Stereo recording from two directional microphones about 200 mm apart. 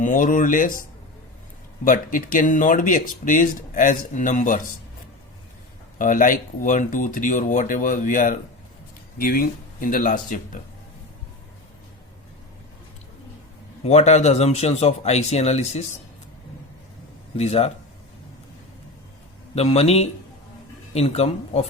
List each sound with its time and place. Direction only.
0.0 s speech: 40° left (ahead or behind)
6.0 s speech: 40° left (ahead or behind)
13.8 s speech: 35° left (ahead or behind)
17.3 s speech: 30° left (ahead or behind)
19.5 s speech: 30° left (ahead or behind)